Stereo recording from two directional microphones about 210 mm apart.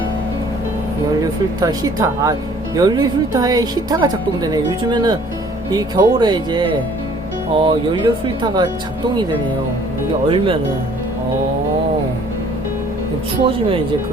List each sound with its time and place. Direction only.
1.2 s speech: 15° right (ahead or behind)
10.2 s speech: 25° right (ahead or behind)